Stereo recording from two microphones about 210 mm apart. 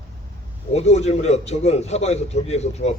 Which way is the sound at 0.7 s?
30° left (ahead or behind).